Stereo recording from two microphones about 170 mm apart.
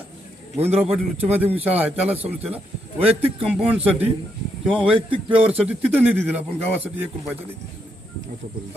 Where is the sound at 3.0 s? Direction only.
35° right (ahead or behind).